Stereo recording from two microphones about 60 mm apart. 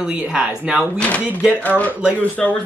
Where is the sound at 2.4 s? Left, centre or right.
Centre.